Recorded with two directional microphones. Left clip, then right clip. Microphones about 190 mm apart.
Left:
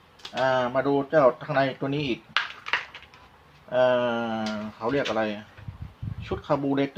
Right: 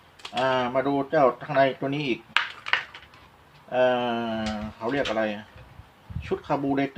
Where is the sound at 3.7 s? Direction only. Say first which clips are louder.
Left 1 dB; 20° left (ahead or behind).